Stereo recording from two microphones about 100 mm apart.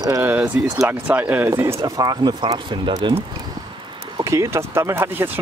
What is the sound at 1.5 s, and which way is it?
Speech, 30° right (ahead or behind).